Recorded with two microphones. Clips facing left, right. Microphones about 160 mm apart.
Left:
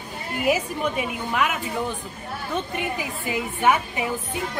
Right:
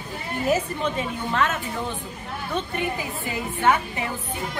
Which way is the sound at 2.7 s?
15° left (ahead or behind).